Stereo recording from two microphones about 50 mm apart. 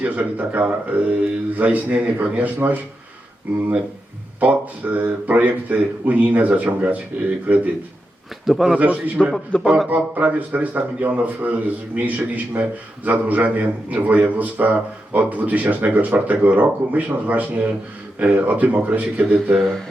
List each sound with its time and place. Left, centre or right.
0.0 s a man's voice: right
4.4 s a man's voice: right
8.4 s a man's voice: centre
9.2 s a man's voice: centre
9.6 s a man's voice: centre
9.9 s a man's voice: right